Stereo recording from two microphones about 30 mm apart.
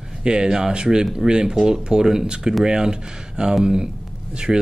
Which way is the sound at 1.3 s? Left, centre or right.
Right.